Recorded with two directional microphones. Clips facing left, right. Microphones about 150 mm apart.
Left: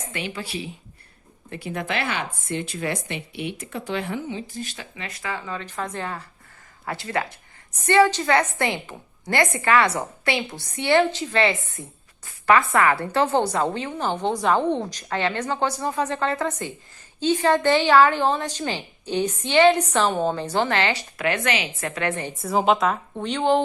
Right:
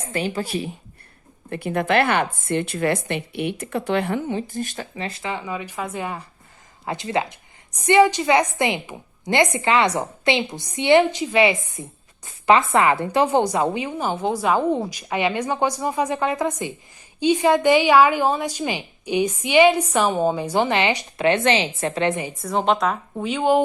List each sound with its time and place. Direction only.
0.1 s a woman's voice: 40° right (ahead or behind)
4.9 s a woman's voice: 30° right (ahead or behind)
22.3 s a woman's voice: centre (ahead or behind)